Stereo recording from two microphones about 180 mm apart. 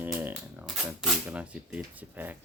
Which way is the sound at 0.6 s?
Centre (ahead or behind).